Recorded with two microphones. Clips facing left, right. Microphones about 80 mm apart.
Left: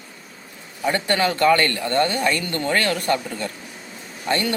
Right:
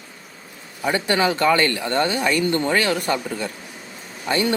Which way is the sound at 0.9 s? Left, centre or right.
Centre.